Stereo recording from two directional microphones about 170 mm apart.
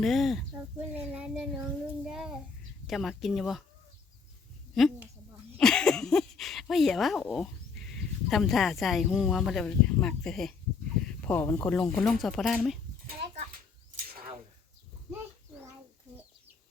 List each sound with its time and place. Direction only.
0.0 s a child's voice: centre (ahead or behind)
4.8 s speech: centre (ahead or behind)